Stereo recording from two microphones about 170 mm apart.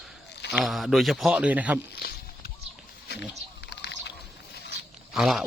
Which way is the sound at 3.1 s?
80° left.